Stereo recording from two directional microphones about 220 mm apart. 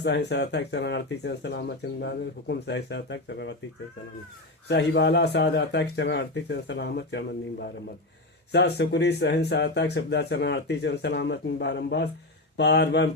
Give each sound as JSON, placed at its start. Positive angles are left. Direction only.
{"t": 0.0, "sound": "speech", "side_deg": 50}
{"t": 4.7, "sound": "speech", "side_deg": 50}
{"t": 8.5, "sound": "speech", "side_deg": 50}